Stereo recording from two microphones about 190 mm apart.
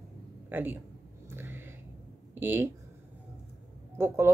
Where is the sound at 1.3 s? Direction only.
10° right (ahead or behind).